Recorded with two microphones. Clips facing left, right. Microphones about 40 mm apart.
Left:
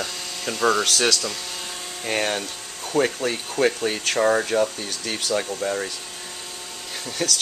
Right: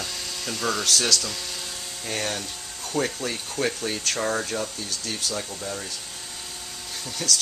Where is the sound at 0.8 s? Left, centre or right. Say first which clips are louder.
Left 3 dB; left.